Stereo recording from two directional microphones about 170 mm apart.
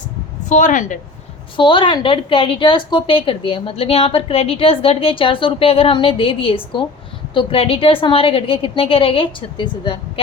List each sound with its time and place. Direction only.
0.4 s a woman's voice: 45° left (ahead or behind)
1.5 s a woman's voice: 30° left (ahead or behind)